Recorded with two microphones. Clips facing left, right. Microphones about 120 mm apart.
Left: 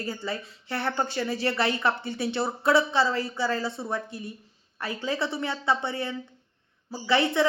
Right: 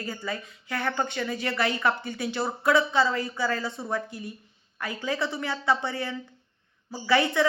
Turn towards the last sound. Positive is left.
turn(degrees=25)  # may be behind; listen again after turning